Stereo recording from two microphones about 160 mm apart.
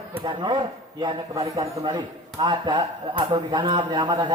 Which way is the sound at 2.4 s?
30° right (ahead or behind).